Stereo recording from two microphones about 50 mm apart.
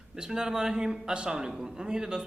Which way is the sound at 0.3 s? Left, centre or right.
Centre.